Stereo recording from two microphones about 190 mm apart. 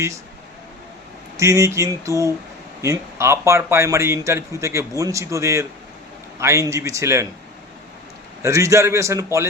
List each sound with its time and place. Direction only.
1.4 s a man's voice: 15° right (ahead or behind)
8.4 s a man's voice: 15° right (ahead or behind)